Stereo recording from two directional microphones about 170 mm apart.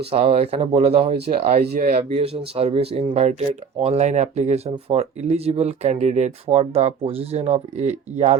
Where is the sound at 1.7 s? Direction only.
60° right (ahead or behind).